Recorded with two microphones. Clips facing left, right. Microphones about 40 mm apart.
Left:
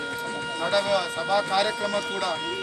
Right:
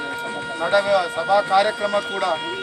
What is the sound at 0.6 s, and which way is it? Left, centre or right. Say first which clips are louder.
Speech: right 6 dB; centre.